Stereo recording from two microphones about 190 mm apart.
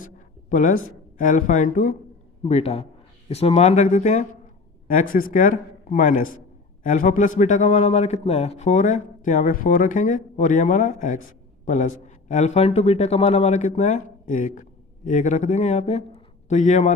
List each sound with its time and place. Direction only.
0.5 s a man's voice: 45° left (ahead or behind)